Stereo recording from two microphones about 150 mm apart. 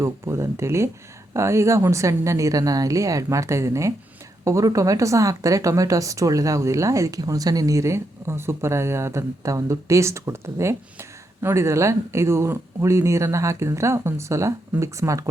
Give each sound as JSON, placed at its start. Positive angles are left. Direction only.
{"t": 0.0, "sound": "speech", "side_deg": -20}